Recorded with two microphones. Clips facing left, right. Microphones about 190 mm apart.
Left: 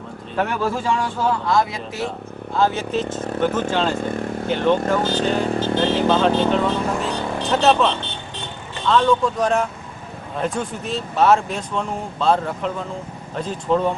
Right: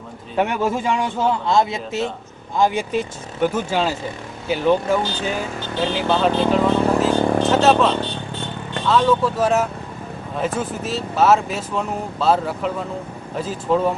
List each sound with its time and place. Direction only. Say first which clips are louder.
0.4 s a man's voice: right 2 dB; 20° right (ahead or behind)
2.5 s speech: right 1 dB; 15° right (ahead or behind)
3.9 s speech: left 5 dB; 55° left (ahead or behind)
4.5 s speech: right 1 dB; 10° right (ahead or behind)